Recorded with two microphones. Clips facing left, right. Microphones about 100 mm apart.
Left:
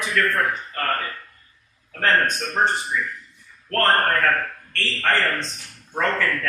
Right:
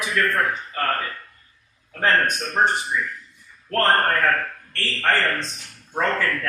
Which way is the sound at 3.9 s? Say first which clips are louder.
Even; centre (ahead or behind).